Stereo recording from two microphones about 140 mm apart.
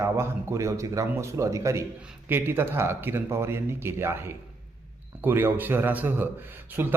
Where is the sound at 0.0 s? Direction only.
20° right (ahead or behind).